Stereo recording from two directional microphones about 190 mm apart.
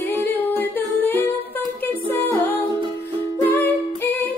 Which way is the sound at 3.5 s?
10° left (ahead or behind).